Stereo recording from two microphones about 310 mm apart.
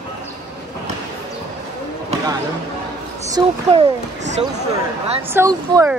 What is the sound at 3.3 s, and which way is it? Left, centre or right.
Speech, centre.